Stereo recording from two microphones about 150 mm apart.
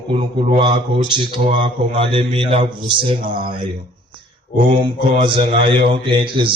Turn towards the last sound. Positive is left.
turn(degrees=-35)  # may be behind; listen again after turning